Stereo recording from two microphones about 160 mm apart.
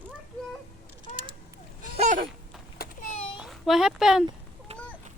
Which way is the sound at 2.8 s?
70° left (ahead or behind).